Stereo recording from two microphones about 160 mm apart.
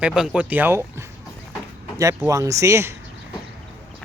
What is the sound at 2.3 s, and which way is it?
Speech, 20° right (ahead or behind).